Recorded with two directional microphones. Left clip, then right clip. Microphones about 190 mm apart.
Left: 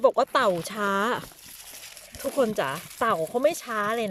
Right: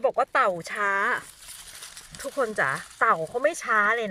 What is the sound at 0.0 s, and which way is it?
Speech, 20° left (ahead or behind).